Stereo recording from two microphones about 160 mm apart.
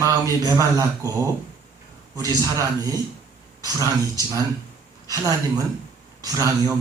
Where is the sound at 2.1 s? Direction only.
20° right (ahead or behind).